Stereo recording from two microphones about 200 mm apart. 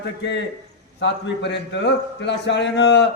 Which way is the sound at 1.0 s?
60° left (ahead or behind).